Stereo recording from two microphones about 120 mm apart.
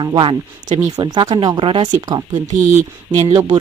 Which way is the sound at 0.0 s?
40° right (ahead or behind).